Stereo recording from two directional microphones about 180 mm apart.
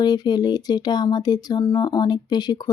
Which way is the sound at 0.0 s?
25° left (ahead or behind).